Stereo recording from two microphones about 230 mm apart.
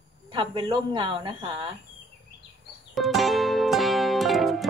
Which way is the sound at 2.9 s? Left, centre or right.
Centre.